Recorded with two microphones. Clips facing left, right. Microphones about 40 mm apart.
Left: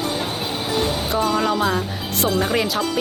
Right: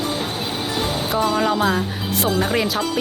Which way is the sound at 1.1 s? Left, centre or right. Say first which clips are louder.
Right 2 dB; centre.